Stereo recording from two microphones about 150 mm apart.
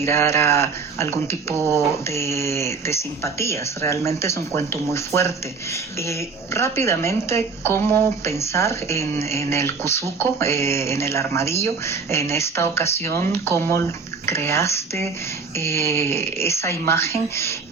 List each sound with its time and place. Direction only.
0.0 s speech: 15° left (ahead or behind)